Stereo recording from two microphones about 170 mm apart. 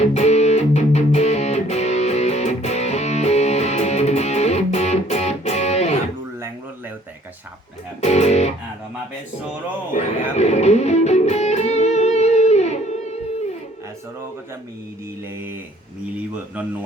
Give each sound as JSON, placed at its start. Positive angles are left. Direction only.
{"t": 0.0, "sound": "music", "side_deg": 40}
{"t": 8.0, "sound": "music", "side_deg": 40}
{"t": 9.9, "sound": "music", "side_deg": 40}
{"t": 16.1, "sound": "a sound", "side_deg": -10}